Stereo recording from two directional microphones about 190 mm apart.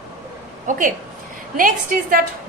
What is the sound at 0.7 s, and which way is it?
A woman's voice, 45° right (ahead or behind).